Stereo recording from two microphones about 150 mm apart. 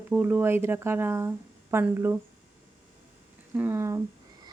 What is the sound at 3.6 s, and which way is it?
Speech, 15° right (ahead or behind).